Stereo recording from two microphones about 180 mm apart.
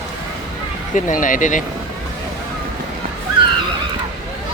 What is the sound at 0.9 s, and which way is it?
Speech, 45° left (ahead or behind).